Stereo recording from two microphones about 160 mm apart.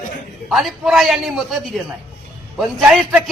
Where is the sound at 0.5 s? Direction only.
Centre (ahead or behind).